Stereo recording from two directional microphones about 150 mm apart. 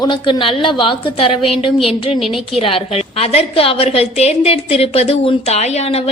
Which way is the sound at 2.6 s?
40° left (ahead or behind).